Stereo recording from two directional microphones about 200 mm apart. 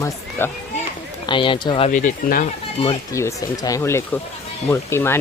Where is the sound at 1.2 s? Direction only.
25° left (ahead or behind).